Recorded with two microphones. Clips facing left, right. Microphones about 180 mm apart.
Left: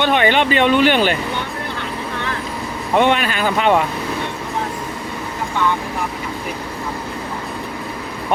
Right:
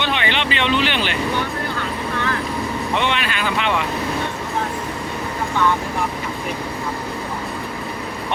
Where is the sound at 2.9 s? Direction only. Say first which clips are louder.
Left 9 dB; 45° left (ahead or behind).